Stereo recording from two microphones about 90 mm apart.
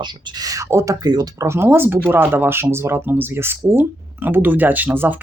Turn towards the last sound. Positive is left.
turn(degrees=-20)  # may be behind; listen again after turning